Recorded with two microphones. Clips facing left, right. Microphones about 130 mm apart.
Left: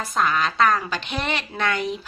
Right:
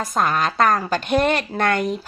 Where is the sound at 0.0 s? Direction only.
45° right (ahead or behind).